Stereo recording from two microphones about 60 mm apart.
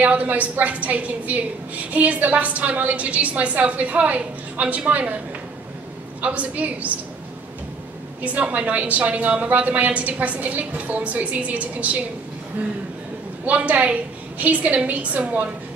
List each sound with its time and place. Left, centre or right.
0.0 s a woman's voice: right
6.2 s a woman's voice: right
8.2 s a woman's voice: right
13.5 s a woman's voice: right